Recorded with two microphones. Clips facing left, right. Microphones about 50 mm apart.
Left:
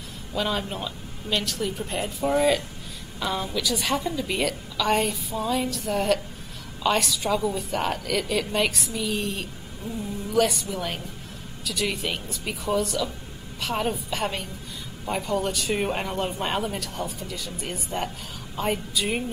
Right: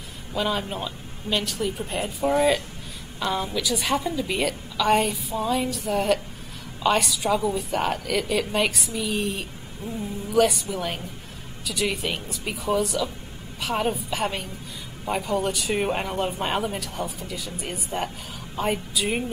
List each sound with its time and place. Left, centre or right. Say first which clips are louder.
0.3 s speech: right 1 dB; centre
9.8 s speech: even; right
10.3 s speech: right 2 dB; centre